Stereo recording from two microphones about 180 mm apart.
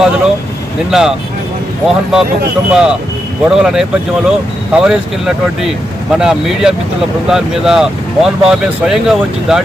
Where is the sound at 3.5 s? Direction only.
5° right (ahead or behind).